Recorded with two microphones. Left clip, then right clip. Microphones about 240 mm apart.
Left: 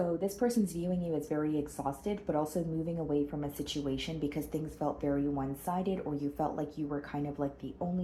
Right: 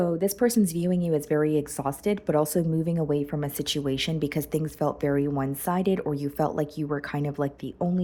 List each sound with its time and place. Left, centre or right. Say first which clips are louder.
0.2 s speech: right 8 dB; right